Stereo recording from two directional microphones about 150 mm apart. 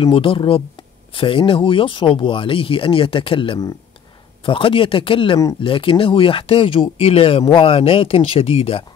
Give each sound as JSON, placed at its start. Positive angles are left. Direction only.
{"t": 0.0, "sound": "speech", "side_deg": 35}